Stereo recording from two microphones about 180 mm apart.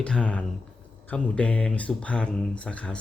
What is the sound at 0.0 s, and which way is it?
Speech, 5° left (ahead or behind).